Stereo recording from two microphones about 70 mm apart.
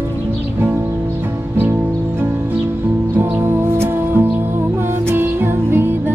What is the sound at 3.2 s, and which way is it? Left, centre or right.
Music, right.